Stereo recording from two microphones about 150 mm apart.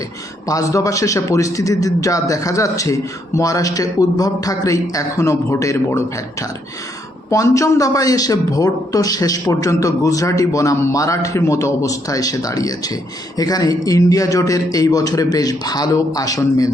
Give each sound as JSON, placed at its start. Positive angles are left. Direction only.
{"t": 0.4, "sound": "a man's voice", "side_deg": 20}
{"t": 7.3, "sound": "a man's voice", "side_deg": 20}